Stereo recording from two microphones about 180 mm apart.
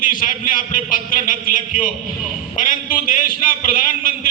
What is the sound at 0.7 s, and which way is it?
A man's voice, 45° left (ahead or behind).